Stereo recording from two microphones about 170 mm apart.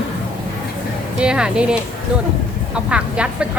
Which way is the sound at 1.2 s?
5° right (ahead or behind).